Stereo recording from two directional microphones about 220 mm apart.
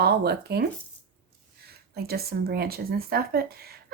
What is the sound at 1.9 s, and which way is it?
Speech, 45° right (ahead or behind).